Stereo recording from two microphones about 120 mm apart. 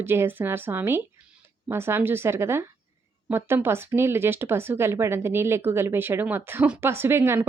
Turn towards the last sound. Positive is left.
turn(degrees=-20)  # may be behind; listen again after turning